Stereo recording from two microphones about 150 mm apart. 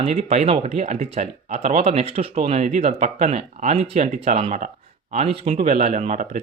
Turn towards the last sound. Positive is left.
turn(degrees=-55)  # may be behind; listen again after turning